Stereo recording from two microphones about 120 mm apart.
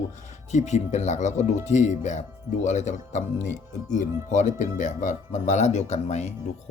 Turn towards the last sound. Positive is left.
turn(degrees=65)  # may be behind; listen again after turning